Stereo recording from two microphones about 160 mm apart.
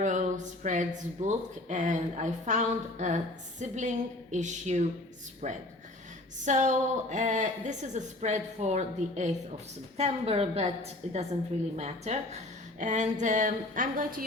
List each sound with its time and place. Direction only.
0.0 s a woman's voice: 50° right (ahead or behind)